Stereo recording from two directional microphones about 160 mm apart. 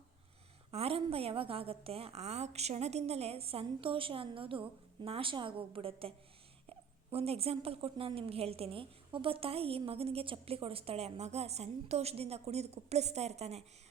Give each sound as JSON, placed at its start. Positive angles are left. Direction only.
{"t": 0.7, "sound": "speech", "side_deg": -40}